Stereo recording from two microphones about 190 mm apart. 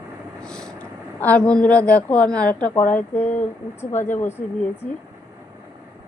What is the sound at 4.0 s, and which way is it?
Speech, 10° left (ahead or behind).